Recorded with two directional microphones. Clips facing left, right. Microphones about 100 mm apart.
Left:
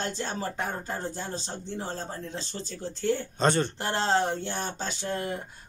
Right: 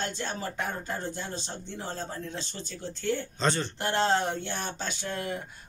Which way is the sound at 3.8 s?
30° left (ahead or behind).